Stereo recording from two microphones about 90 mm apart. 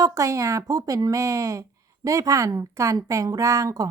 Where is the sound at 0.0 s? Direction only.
35° right (ahead or behind).